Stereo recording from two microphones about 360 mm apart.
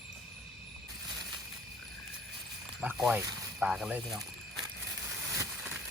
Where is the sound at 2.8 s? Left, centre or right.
Centre.